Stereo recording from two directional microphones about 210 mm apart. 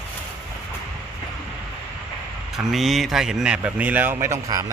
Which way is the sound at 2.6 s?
Centre (ahead or behind).